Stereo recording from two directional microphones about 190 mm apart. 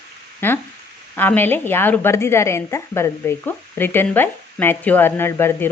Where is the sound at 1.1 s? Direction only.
10° left (ahead or behind).